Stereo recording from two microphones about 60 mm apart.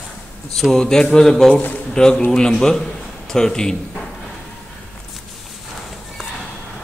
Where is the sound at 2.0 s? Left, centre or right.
Centre.